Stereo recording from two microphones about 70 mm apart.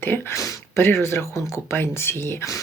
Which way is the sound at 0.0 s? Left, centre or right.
Left.